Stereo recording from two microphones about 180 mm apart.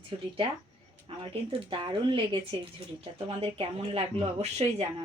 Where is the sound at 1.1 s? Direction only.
30° right (ahead or behind).